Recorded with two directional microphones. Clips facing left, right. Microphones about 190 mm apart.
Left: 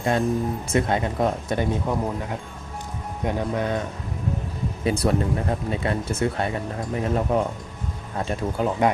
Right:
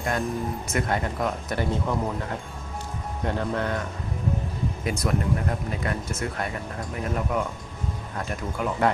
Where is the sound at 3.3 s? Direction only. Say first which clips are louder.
Left 2 dB; 15° left (ahead or behind).